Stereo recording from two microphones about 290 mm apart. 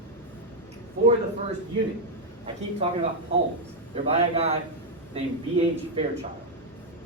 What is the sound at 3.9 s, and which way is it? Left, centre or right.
Speech, right.